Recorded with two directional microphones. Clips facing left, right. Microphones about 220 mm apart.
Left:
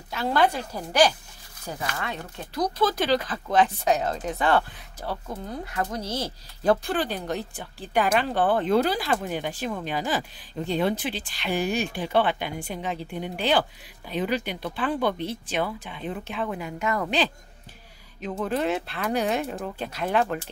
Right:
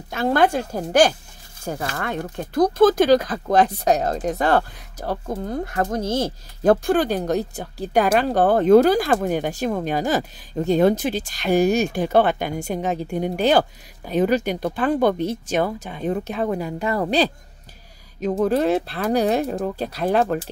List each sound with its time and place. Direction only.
0.1 s speech: 50° right (ahead or behind)